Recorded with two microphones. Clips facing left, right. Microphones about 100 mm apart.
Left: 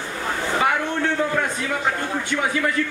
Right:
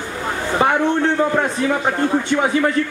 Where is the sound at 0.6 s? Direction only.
30° right (ahead or behind).